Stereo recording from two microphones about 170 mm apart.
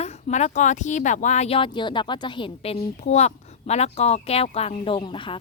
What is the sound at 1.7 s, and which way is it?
A woman's voice, 25° left (ahead or behind).